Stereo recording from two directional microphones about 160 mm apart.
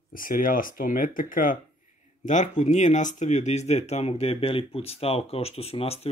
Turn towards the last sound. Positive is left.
turn(degrees=40)  # may be behind; listen again after turning